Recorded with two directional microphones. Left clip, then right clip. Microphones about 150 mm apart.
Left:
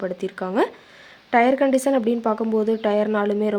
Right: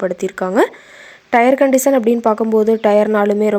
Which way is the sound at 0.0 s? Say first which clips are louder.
Right 8 dB; 45° right (ahead or behind).